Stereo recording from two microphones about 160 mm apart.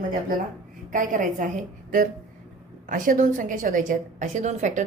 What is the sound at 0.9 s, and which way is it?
Speech, 55° right (ahead or behind).